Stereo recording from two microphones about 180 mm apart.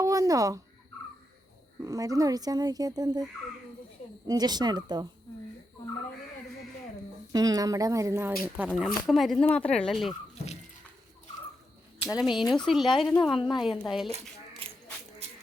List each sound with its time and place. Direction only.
0.0 s speech: 20° right (ahead or behind)
1.8 s speech: 20° right (ahead or behind)
4.3 s speech: 20° right (ahead or behind)
7.3 s speech: 20° right (ahead or behind); by 10.2 s centre (ahead or behind)
12.0 s speech: centre (ahead or behind)
14.6 s a sound: 30° right (ahead or behind)